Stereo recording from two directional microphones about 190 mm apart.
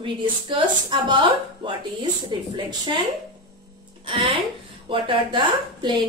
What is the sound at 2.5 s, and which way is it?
Speech, 25° right (ahead or behind).